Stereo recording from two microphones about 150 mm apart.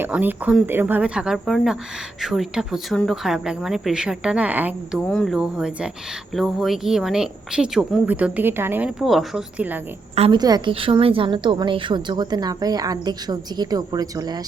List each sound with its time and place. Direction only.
0.0 s speech: 10° right (ahead or behind)
5.0 s speech: 5° left (ahead or behind); by 8.9 s 15° right (ahead or behind)
9.0 s speech: centre (ahead or behind)
10.3 s a woman's voice: 30° right (ahead or behind)